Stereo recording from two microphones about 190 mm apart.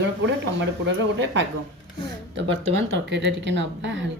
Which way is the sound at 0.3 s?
70° right (ahead or behind).